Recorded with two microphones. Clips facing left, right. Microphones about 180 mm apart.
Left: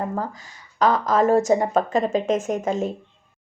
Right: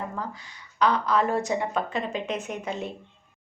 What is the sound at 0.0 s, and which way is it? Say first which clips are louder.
Speech: left 6 dB; 45° left (ahead or behind).